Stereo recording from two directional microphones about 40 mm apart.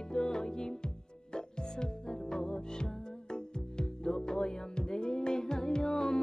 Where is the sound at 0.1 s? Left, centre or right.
Centre.